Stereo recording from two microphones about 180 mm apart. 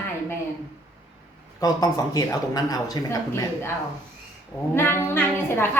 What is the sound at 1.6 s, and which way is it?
Speech, 20° left (ahead or behind).